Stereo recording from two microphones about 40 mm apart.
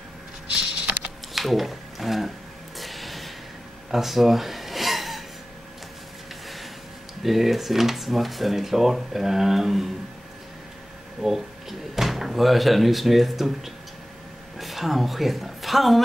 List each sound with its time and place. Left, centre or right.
0.5 s typing: right
1.3 s speech: centre
2.8 s a sound: centre
7.2 s speech: centre
11.1 s speech: centre